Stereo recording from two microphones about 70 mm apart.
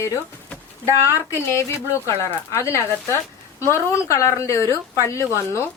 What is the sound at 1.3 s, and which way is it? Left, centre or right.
Speech, left.